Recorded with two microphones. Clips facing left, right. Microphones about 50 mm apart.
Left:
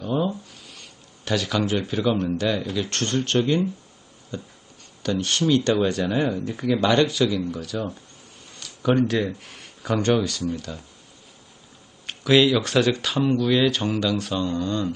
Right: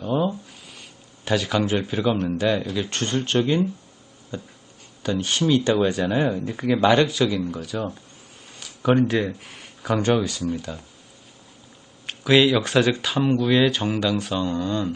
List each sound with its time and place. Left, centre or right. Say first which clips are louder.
0.0 s a sound: right 1 dB; centre
2.4 s speech: right 2 dB; centre
12.0 s speech: even; centre